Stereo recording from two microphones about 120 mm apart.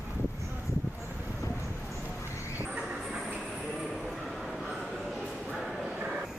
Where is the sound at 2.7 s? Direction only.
Centre (ahead or behind).